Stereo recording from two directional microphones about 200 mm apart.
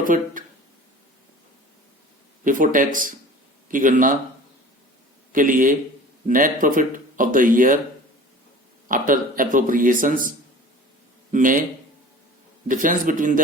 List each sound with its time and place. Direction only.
0.0 s speech: 45° right (ahead or behind)
2.4 s a man's voice: 40° right (ahead or behind)
5.3 s speech: 40° right (ahead or behind)
8.9 s a man's voice: 45° right (ahead or behind)
12.6 s a man's voice: 40° right (ahead or behind)